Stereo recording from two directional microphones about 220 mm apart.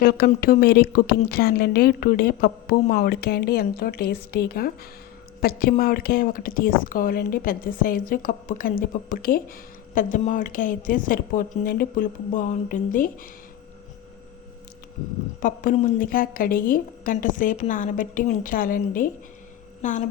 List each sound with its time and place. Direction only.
0.0 s a woman's voice: 45° left (ahead or behind)
15.4 s a woman's voice: 35° left (ahead or behind)